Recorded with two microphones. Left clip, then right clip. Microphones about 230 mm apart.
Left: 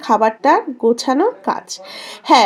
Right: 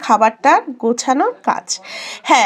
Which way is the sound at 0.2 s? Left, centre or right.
Right.